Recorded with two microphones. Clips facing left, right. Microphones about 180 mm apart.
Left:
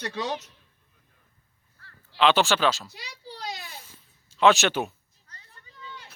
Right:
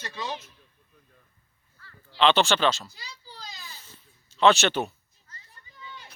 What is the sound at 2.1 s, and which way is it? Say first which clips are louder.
Speech: even; 5° left (ahead or behind).